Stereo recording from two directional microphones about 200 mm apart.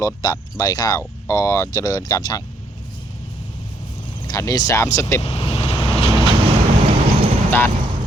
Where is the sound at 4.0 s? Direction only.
20° left (ahead or behind).